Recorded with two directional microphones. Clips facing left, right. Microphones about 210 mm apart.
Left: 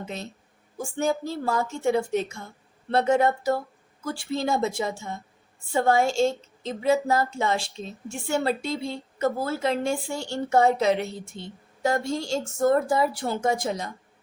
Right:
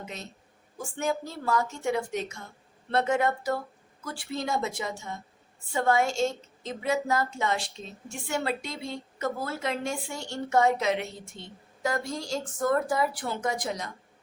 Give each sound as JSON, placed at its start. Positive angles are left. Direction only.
{"t": 0.8, "sound": "a woman's voice", "side_deg": 30}